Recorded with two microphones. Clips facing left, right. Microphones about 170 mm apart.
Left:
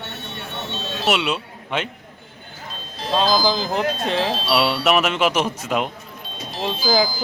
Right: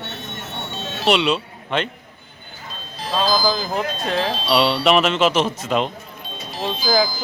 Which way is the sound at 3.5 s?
25° left (ahead or behind).